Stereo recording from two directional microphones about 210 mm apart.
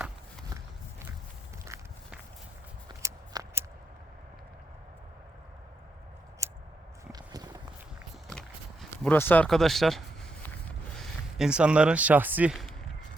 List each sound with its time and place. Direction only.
3.0 s scissors: 10° right (ahead or behind)
7.1 s walk: 20° right (ahead or behind)
8.3 s a sound: 5° left (ahead or behind)